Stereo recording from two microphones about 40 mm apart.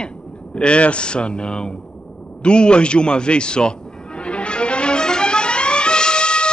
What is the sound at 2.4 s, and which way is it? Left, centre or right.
Music, left.